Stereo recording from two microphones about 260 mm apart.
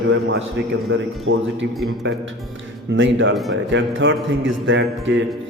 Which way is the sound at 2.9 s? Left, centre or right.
Right.